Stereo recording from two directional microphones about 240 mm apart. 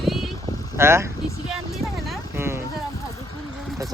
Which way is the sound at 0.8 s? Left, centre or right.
Centre.